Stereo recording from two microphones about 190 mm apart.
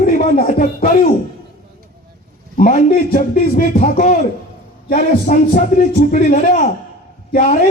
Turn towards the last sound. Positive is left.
turn(degrees=50)  # may be behind; listen again after turning